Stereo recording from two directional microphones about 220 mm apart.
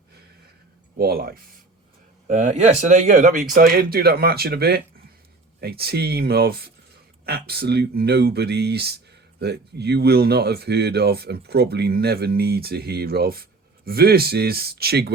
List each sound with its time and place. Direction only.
0.9 s speech: 45° right (ahead or behind)